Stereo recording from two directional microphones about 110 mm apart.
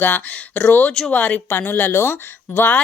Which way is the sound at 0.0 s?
15° left (ahead or behind).